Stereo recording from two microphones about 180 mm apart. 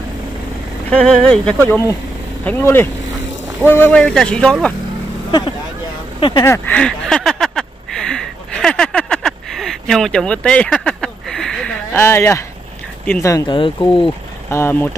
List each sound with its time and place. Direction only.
0.8 s speech: 5° left (ahead or behind)
6.1 s speech: 30° left (ahead or behind)
6.4 s a sound: 10° left (ahead or behind)
13.0 s speech: 15° left (ahead or behind)